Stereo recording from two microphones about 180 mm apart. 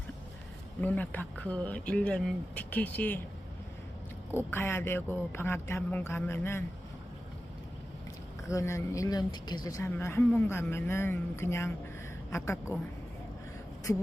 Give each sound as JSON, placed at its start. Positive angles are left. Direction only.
{"t": 0.8, "sound": "speech", "side_deg": 10}
{"t": 4.3, "sound": "speech", "side_deg": 10}
{"t": 8.4, "sound": "speech", "side_deg": 15}